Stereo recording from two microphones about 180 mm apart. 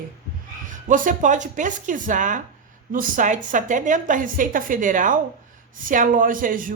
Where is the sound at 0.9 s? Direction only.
45° right (ahead or behind).